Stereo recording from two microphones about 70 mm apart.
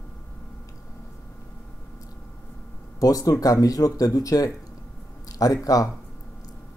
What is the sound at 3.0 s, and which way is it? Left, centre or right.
Speech, left.